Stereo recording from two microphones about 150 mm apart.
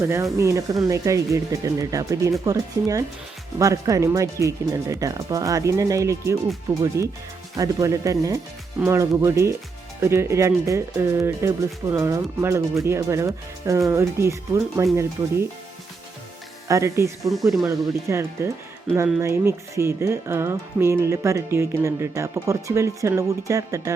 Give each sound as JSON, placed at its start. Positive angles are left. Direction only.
{"t": 0.0, "sound": "speech", "side_deg": -15}
{"t": 16.6, "sound": "speech", "side_deg": -20}